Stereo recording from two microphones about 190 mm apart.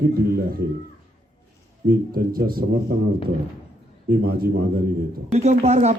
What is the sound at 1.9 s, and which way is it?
Speech, 50° right (ahead or behind).